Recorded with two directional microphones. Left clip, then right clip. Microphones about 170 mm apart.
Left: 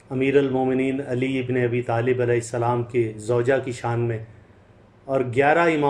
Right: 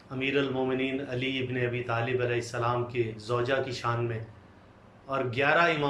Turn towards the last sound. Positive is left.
turn(degrees=45)  # may be behind; listen again after turning